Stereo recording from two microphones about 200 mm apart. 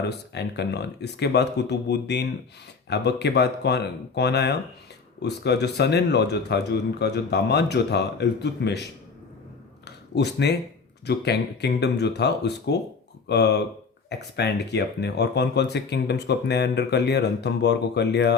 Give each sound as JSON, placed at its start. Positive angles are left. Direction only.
{"t": 0.1, "sound": "speech", "side_deg": 55}
{"t": 10.2, "sound": "speech", "side_deg": 55}